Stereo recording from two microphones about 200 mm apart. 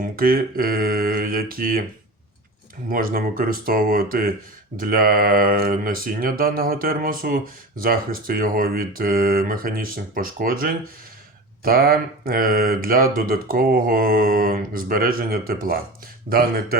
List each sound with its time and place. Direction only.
0.0 s speech: 45° right (ahead or behind)
2.9 s speech: 45° right (ahead or behind)